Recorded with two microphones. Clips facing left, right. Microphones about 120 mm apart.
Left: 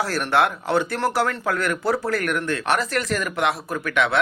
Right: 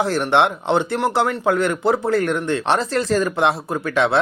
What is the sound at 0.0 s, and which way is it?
A man's voice, 20° right (ahead or behind).